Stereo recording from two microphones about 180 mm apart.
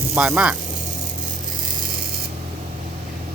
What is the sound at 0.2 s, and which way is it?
Speech, 5° right (ahead or behind).